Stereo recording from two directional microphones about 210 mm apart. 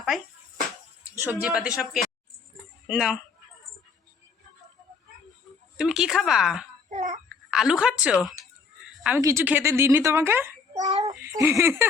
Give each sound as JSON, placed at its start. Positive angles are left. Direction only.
{"t": 1.2, "sound": "a woman's voice", "side_deg": -10}
{"t": 5.7, "sound": "a woman's voice", "side_deg": 0}
{"t": 6.9, "sound": "a child's voice", "side_deg": -35}
{"t": 7.5, "sound": "a woman's voice", "side_deg": -5}